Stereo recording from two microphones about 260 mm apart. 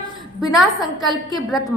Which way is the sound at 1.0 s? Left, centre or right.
Centre.